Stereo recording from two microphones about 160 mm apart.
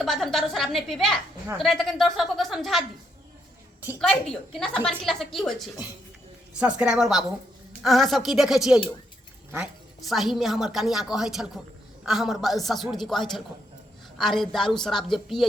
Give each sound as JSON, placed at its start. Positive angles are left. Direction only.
{"t": 0.0, "sound": "a woman's voice", "side_deg": 0}
{"t": 4.0, "sound": "a woman's voice", "side_deg": 5}
{"t": 10.1, "sound": "a woman's voice", "side_deg": 0}